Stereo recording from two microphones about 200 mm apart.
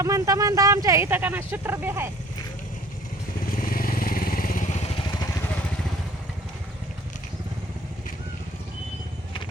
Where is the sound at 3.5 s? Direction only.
45° left (ahead or behind); by 5.3 s 25° left (ahead or behind).